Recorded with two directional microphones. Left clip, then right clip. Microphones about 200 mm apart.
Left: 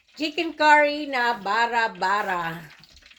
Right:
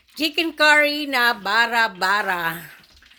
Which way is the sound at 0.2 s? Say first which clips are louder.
Right 4 dB; 50° right (ahead or behind).